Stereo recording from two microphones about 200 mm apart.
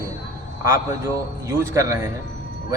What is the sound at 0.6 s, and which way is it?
A man's voice, 15° right (ahead or behind).